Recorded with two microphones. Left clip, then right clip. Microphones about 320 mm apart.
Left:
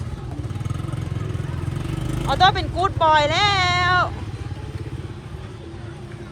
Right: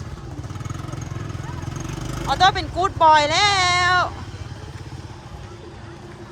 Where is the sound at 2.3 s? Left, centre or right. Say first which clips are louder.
Even; centre.